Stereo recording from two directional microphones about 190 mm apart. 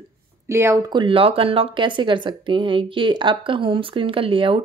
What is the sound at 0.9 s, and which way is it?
A woman's voice, 30° right (ahead or behind).